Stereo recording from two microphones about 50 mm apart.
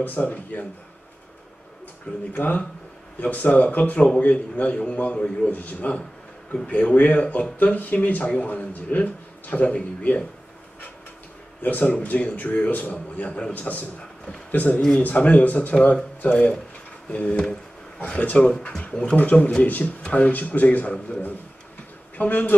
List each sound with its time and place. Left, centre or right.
0.0 s speech: left
2.3 s a man's voice: left
5.5 s a man's voice: left
11.6 s a man's voice: left
17.1 s a man's voice: left
19.1 s speech: left
22.1 s speech: left